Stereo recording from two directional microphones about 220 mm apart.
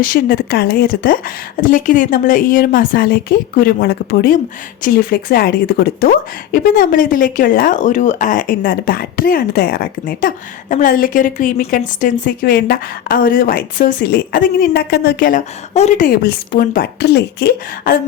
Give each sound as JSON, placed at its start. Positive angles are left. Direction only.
{"t": 0.0, "sound": "a woman's voice", "side_deg": 40}